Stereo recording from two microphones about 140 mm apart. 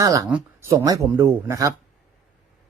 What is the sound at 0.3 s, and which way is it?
Speech, 10° right (ahead or behind).